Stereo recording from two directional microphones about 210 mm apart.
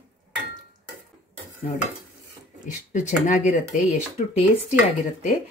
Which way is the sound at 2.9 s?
35° left (ahead or behind).